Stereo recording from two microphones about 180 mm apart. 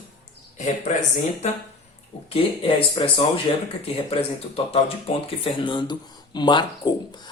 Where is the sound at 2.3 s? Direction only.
30° left (ahead or behind).